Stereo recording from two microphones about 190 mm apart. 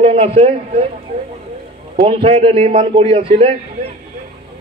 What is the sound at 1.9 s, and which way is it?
A man's voice, 30° right (ahead or behind).